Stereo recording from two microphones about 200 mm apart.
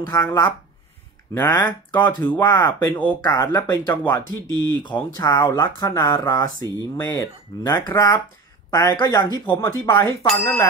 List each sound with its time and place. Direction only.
0.0 s speech: 15° left (ahead or behind)